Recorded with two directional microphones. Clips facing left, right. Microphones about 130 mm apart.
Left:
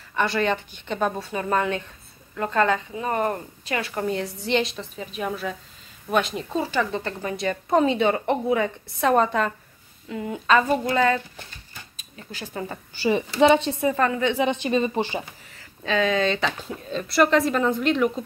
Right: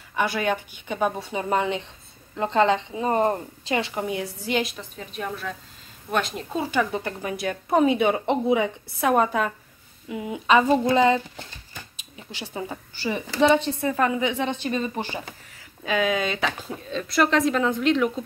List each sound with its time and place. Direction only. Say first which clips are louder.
0.1 s a woman's voice: left 1 dB; 10° right (ahead or behind); by 3.9 s 25° right (ahead or behind)
3.9 s speech: left 2 dB; 10° right (ahead or behind)
6.7 s a woman's voice: right 1 dB; 10° right (ahead or behind)
12.6 s a woman's voice: even; 15° right (ahead or behind)
13.0 s a woman's voice: left 3 dB; 15° left (ahead or behind)
13.9 s a woman's voice: right 2 dB; 10° right (ahead or behind)
14.3 s speech: left 4 dB; 15° left (ahead or behind)
15.8 s speech: left 2 dB; 10° right (ahead or behind)